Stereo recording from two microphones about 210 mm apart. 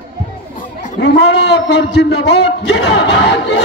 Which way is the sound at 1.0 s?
55° left (ahead or behind).